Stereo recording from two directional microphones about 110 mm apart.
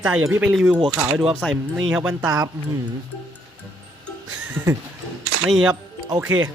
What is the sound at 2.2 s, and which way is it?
Speech, 30° right (ahead or behind).